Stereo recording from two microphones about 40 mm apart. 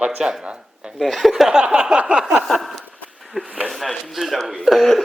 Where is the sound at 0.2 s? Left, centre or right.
Centre.